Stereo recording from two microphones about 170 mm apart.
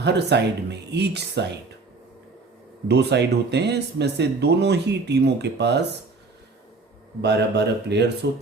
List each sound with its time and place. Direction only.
0.0 s speech: 85° right
2.8 s speech: 80° right
7.2 s speech: 80° right